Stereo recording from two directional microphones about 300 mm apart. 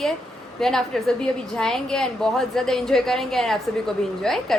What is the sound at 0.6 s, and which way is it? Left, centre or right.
A woman's voice, centre.